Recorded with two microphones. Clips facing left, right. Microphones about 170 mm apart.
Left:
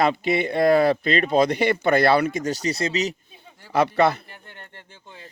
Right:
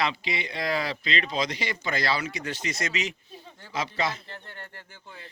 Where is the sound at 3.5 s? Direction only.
10° left (ahead or behind).